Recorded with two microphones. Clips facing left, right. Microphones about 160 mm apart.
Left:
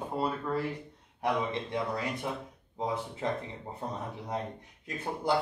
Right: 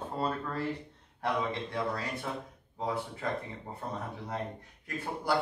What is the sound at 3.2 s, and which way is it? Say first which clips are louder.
A man's voice: left 2 dB; 25° left (ahead or behind).